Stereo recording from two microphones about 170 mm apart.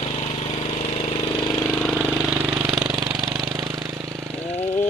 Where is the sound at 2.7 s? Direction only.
Centre (ahead or behind).